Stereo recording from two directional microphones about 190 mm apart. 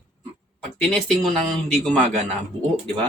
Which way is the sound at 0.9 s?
Centre (ahead or behind).